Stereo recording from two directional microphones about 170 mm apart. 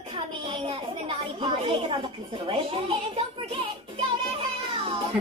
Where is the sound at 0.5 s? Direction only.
30° right (ahead or behind).